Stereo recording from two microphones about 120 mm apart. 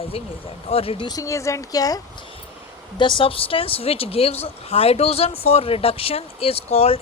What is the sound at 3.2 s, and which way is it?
Speech, 50° left (ahead or behind).